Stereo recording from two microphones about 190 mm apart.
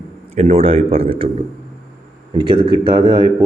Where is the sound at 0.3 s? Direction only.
35° right (ahead or behind).